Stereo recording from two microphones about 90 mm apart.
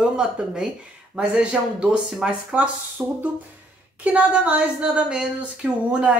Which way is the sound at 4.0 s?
15° right (ahead or behind).